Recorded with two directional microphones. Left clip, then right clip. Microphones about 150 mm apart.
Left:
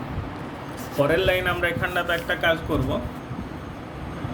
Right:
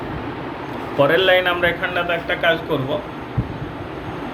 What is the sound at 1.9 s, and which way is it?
Speech, 35° left (ahead or behind).